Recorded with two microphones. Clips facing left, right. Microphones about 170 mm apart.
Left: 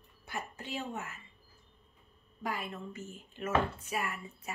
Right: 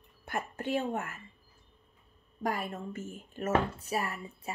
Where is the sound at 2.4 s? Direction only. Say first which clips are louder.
Right 4 dB; 45° right (ahead or behind).